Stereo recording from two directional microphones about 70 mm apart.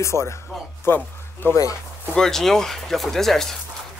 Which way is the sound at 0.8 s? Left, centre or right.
Left.